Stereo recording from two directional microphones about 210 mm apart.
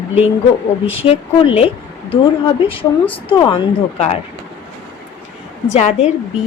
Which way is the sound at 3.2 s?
20° left (ahead or behind).